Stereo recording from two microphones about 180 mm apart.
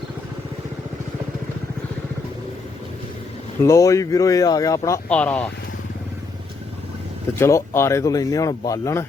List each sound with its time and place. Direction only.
3.6 s speech: 15° left (ahead or behind)
5.0 s speech: 5° left (ahead or behind)
7.3 s speech: 15° left (ahead or behind)